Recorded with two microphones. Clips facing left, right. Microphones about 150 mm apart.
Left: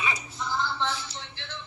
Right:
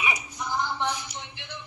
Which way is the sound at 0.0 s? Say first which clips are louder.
Right 1 dB; 15° right (ahead or behind).